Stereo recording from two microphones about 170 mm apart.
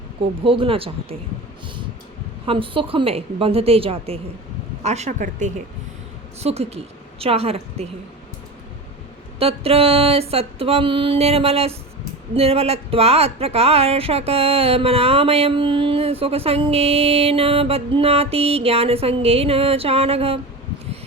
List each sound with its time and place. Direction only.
0.4 s speech: 30° right (ahead or behind)
2.5 s speech: 30° right (ahead or behind)
9.4 s speech: 35° right (ahead or behind)